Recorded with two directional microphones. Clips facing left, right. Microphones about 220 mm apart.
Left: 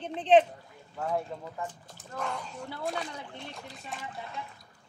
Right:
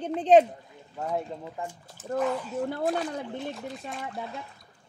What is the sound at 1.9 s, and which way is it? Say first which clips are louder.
Speech: right 12 dB; 5° right (ahead or behind).